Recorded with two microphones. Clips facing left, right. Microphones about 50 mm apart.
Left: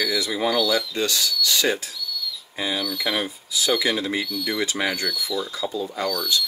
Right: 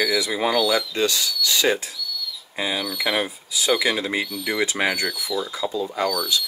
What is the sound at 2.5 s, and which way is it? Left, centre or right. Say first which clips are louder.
Speech: right 1 dB; right.